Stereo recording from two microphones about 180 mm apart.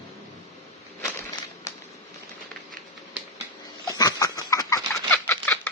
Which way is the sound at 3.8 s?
20° left (ahead or behind).